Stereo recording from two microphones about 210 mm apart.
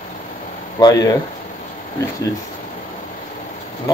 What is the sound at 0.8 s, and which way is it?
Speech, 15° left (ahead or behind).